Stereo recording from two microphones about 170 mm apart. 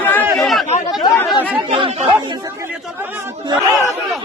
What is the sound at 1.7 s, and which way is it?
Speech, 35° right (ahead or behind).